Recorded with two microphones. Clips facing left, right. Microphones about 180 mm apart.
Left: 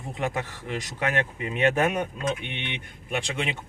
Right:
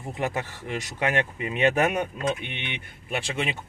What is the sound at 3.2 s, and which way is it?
Speech, 5° right (ahead or behind).